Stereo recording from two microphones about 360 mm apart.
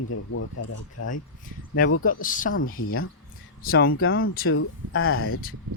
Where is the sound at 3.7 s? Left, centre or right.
Left.